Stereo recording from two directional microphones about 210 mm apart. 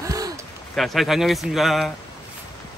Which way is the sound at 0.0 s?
15° right (ahead or behind).